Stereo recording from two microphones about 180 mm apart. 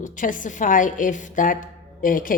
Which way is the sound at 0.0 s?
45° left (ahead or behind).